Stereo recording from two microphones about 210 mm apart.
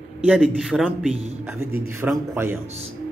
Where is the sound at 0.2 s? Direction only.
5° right (ahead or behind).